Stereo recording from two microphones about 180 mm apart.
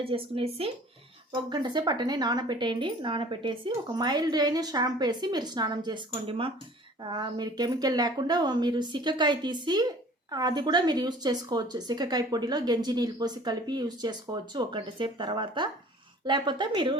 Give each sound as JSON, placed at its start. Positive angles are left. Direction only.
{"t": 0.0, "sound": "speech", "side_deg": -30}